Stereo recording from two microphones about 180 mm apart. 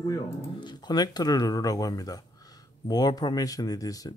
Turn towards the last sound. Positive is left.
turn(degrees=20)  # may be behind; listen again after turning